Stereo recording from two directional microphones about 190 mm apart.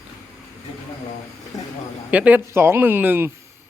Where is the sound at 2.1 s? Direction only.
10° right (ahead or behind).